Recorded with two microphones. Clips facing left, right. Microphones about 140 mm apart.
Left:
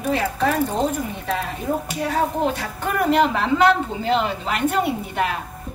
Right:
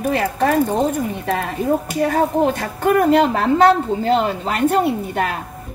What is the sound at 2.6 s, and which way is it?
A woman's voice, 50° right (ahead or behind).